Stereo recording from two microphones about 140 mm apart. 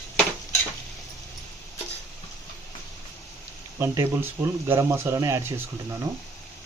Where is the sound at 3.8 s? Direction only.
20° right (ahead or behind).